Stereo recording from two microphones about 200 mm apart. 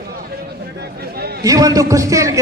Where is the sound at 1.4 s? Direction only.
20° right (ahead or behind).